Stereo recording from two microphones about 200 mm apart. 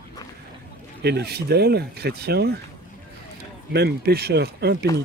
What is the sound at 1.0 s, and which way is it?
Speech, 55° right (ahead or behind).